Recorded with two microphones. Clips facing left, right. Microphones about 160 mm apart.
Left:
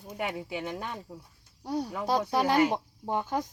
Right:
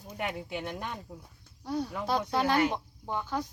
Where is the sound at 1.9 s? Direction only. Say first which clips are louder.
Left 2 dB; 15° left (ahead or behind).